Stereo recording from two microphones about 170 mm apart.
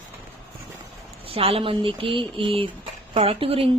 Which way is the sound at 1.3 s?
35° right (ahead or behind).